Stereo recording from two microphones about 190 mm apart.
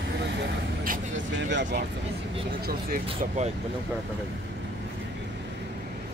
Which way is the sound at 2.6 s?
45° right (ahead or behind).